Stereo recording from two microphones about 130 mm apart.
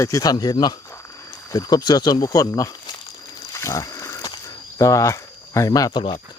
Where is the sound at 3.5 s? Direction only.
25° left (ahead or behind).